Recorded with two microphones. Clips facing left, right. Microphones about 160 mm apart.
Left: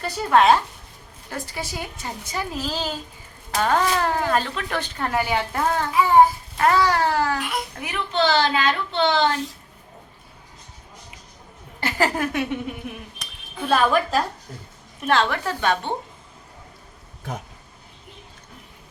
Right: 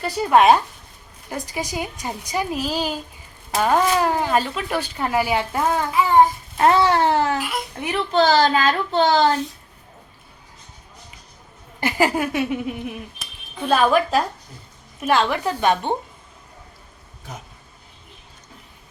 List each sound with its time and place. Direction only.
0.3 s speech: 15° right (ahead or behind)
6.6 s a child's voice: 25° right (ahead or behind)
7.3 s a child's voice: 5° right (ahead or behind)
7.8 s a woman's voice: 30° right (ahead or behind)
11.8 s speech: 15° right (ahead or behind)